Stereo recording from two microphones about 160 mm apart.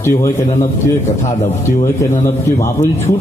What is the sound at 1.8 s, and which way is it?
A man's voice, 20° left (ahead or behind).